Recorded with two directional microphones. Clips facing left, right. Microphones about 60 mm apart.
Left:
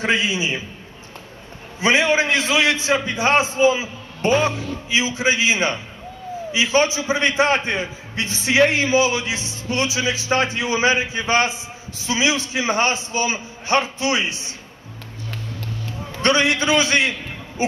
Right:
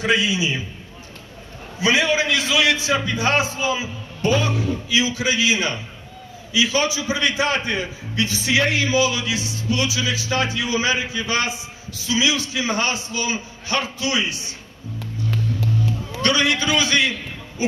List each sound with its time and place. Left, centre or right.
0.0 s a man's voice: left
1.8 s a man's voice: left
15.3 s music: centre
16.2 s a man's voice: left
17.6 s a sound: left